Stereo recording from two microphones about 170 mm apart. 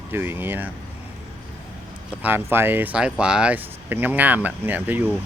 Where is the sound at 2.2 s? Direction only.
10° right (ahead or behind).